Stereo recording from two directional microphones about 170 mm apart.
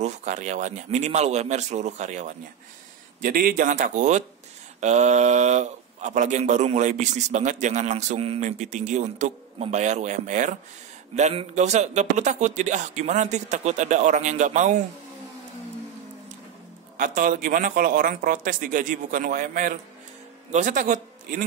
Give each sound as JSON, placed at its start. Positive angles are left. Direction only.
{"t": 0.0, "sound": "speech", "side_deg": -45}
{"t": 3.2, "sound": "speech", "side_deg": -55}
{"t": 16.9, "sound": "speech", "side_deg": -50}